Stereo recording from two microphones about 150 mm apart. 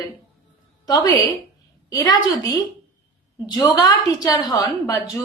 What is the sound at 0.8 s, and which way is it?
A woman's voice, 25° left (ahead or behind).